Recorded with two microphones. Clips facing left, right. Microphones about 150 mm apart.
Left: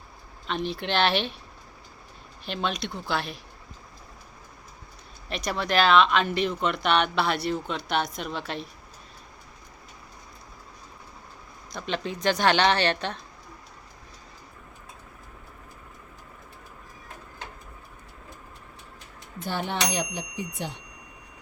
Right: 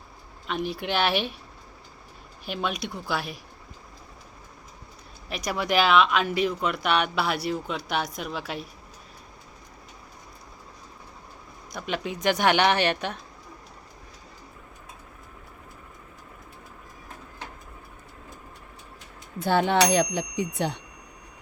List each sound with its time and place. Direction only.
0.4 s speech: 5° right (ahead or behind)
2.4 s speech: 10° right (ahead or behind)
5.5 s speech: 10° right (ahead or behind)
11.7 s speech: 10° right (ahead or behind)
19.4 s speech: 75° right (ahead or behind)